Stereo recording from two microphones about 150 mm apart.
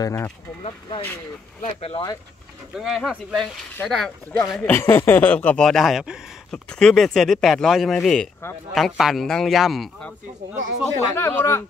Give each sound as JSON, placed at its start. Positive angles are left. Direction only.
{"t": 0.0, "sound": "speech", "side_deg": 20}
{"t": 0.7, "sound": "speech", "side_deg": 35}
{"t": 2.7, "sound": "speech", "side_deg": 0}
{"t": 3.7, "sound": "speech", "side_deg": 5}
{"t": 4.3, "sound": "speech", "side_deg": 20}
{"t": 11.1, "sound": "speech", "side_deg": 15}